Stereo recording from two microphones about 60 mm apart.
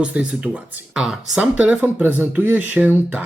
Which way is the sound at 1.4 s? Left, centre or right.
Right.